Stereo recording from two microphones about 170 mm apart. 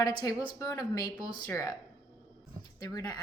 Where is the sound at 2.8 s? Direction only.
20° left (ahead or behind).